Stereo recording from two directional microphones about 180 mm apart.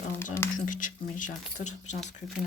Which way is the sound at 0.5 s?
45° left (ahead or behind).